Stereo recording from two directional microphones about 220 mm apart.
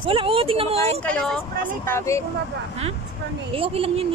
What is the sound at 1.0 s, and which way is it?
Speech, 5° left (ahead or behind).